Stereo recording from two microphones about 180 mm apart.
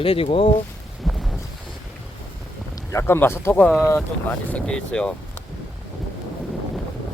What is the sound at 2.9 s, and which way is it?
Speech, 15° left (ahead or behind).